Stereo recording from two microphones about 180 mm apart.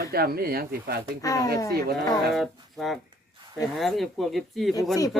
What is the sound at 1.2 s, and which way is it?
Speech, 20° left (ahead or behind).